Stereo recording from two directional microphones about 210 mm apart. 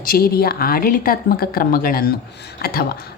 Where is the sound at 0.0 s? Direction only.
45° left (ahead or behind).